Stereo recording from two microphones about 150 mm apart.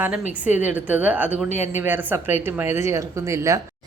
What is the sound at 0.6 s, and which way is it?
A woman's voice, 10° right (ahead or behind).